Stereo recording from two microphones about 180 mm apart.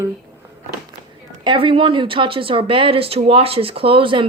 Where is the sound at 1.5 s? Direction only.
30° right (ahead or behind).